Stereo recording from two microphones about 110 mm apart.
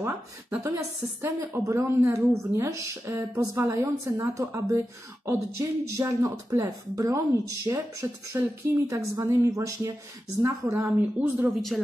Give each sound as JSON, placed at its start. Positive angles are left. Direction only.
{"t": 0.0, "sound": "speech", "side_deg": -25}